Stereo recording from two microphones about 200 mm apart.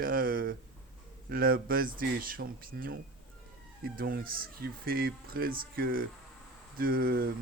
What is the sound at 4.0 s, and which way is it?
Speech, 45° right (ahead or behind).